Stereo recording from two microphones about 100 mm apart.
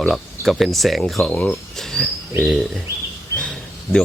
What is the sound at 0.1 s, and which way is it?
Speech, centre (ahead or behind).